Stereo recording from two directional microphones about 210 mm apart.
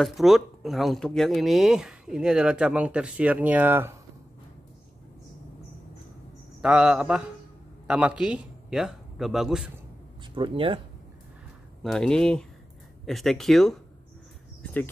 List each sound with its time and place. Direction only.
0.0 s speech: centre (ahead or behind)
6.6 s a man's voice: 5° right (ahead or behind)
10.3 s speech: 25° right (ahead or behind)
11.8 s speech: centre (ahead or behind)
14.6 s a sound: 10° left (ahead or behind)